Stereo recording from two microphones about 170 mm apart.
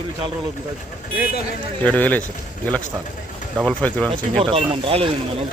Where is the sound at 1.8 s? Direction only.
10° left (ahead or behind).